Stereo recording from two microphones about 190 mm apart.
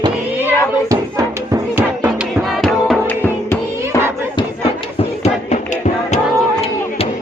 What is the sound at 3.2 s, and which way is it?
Music, 15° left (ahead or behind).